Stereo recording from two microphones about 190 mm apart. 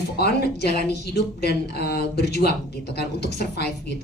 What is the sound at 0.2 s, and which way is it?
Speech, 55° left (ahead or behind).